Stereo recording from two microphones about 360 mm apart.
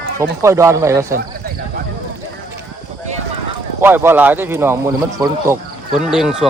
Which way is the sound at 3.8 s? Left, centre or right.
Centre.